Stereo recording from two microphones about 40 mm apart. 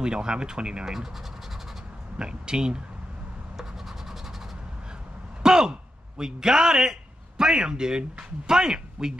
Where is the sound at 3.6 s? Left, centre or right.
Centre.